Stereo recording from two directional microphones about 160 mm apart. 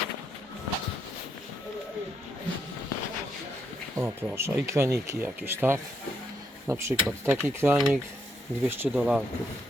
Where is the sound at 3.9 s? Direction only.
15° right (ahead or behind).